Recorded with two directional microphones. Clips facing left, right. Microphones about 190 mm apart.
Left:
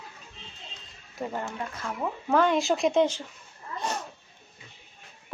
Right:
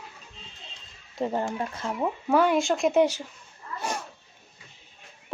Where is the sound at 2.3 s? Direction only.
10° right (ahead or behind).